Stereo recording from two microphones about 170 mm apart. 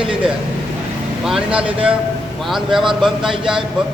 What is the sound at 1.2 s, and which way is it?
A man's voice, 5° right (ahead or behind).